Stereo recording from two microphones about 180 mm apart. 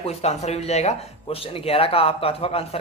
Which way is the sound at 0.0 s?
35° left (ahead or behind).